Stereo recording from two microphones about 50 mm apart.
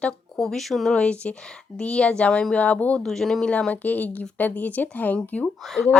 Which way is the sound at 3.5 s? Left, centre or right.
Left.